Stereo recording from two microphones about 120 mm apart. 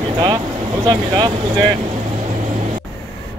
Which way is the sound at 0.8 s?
40° right (ahead or behind).